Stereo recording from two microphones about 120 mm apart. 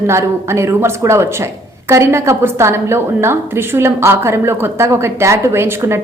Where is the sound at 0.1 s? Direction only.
20° right (ahead or behind).